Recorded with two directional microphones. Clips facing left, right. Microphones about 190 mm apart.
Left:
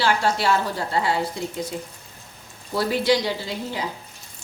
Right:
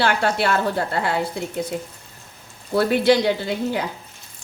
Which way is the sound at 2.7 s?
60° right (ahead or behind).